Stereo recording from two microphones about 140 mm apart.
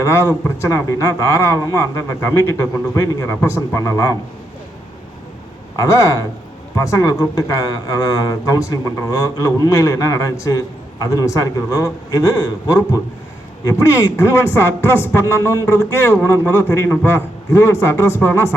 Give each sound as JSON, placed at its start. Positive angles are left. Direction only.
{"t": 0.0, "sound": "speech", "side_deg": 20}
{"t": 5.7, "sound": "speech", "side_deg": 20}
{"t": 13.7, "sound": "speech", "side_deg": 20}